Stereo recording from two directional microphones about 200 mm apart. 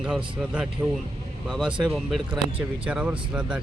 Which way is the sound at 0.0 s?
5° right (ahead or behind).